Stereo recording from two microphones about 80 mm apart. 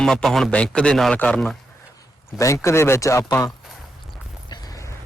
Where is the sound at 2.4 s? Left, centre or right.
Left.